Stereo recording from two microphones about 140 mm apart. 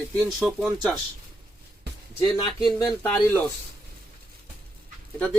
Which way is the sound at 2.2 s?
30° left (ahead or behind).